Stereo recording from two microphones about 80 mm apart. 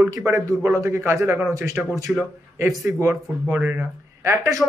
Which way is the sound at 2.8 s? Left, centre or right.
Right.